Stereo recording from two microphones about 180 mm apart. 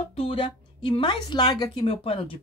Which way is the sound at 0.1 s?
30° left (ahead or behind).